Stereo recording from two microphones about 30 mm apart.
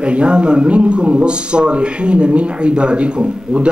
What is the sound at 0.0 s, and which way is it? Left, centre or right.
A man's voice, right.